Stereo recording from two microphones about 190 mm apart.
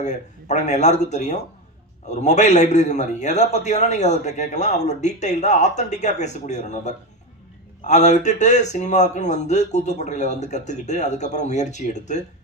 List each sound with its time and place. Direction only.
0.0 s a man's voice: 40° left (ahead or behind)